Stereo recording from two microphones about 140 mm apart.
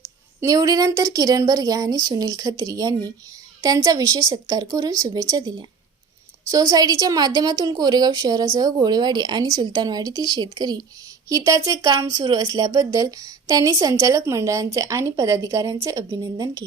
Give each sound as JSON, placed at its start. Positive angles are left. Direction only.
{"t": 0.3, "sound": "speech", "side_deg": -25}